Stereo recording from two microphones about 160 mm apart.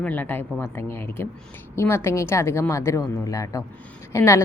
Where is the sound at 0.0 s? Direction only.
10° left (ahead or behind).